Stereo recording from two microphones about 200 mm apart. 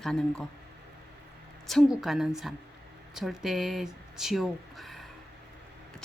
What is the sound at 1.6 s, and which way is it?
Speech, centre (ahead or behind).